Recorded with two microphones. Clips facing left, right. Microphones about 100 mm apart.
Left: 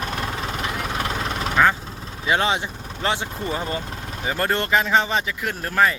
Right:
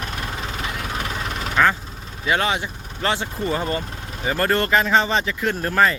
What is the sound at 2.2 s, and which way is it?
Speech, 20° left (ahead or behind).